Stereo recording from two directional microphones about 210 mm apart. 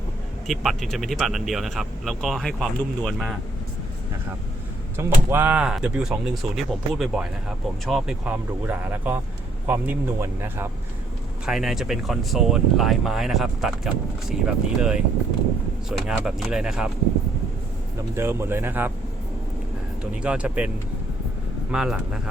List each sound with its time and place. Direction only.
0.4 s speech: centre (ahead or behind)
4.9 s speech: 10° right (ahead or behind)
18.1 s speech: 10° right (ahead or behind)
20.2 s speech: 5° right (ahead or behind)
21.7 s speech: 5° right (ahead or behind)